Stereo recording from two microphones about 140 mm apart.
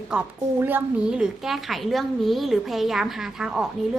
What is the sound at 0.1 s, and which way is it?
A woman's voice, 10° right (ahead or behind).